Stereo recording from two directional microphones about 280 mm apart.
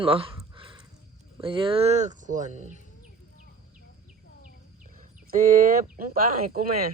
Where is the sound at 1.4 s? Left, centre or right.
Centre.